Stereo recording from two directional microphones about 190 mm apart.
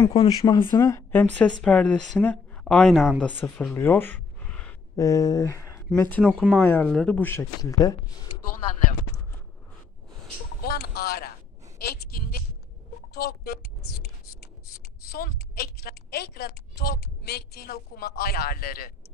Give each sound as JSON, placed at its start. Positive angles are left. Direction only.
{"t": 0.0, "sound": "speech", "side_deg": 20}
{"t": 4.9, "sound": "speech", "side_deg": 15}
{"t": 10.6, "sound": "boat", "side_deg": 55}
{"t": 11.8, "sound": "a sound", "side_deg": 55}
{"t": 15.0, "sound": "a woman's voice", "side_deg": 55}